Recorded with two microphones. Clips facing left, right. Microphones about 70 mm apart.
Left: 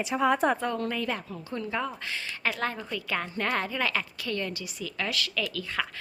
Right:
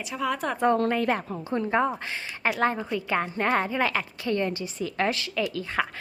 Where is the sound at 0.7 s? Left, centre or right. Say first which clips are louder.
Right 6 dB; right.